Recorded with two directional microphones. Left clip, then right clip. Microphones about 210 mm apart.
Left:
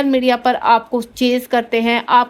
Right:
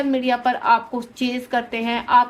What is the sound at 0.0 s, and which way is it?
A woman's voice, 50° left (ahead or behind).